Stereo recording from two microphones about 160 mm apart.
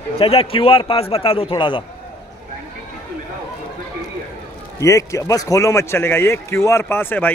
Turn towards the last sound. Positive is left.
turn(degrees=10)  # may be behind; listen again after turning